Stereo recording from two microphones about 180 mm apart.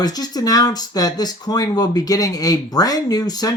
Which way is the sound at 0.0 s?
20° left (ahead or behind).